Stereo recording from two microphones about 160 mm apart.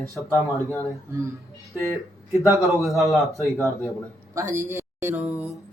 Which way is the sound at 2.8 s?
Centre (ahead or behind).